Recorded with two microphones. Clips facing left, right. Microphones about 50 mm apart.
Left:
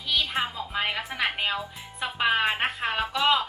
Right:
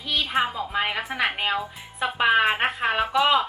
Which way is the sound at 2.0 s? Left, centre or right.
Centre.